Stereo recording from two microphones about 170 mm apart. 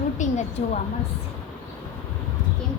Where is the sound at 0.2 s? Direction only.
45° left (ahead or behind).